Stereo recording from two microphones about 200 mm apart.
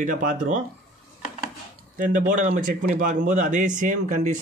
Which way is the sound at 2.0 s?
40° right (ahead or behind).